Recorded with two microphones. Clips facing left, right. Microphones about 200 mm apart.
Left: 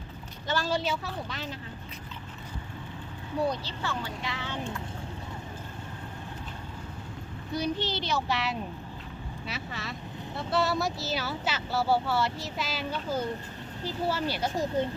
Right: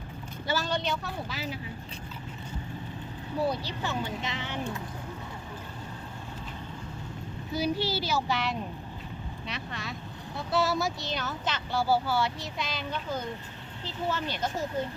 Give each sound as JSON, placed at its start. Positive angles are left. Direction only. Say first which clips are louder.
{"t": 0.4, "sound": "speech", "louder": "left 1 dB", "side_deg": 0}
{"t": 3.4, "sound": "speech", "louder": "even", "side_deg": -10}
{"t": 7.5, "sound": "speech", "louder": "right 1 dB", "side_deg": -5}